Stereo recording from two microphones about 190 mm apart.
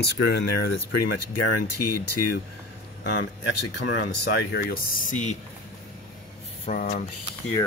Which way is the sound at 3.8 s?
65° left (ahead or behind).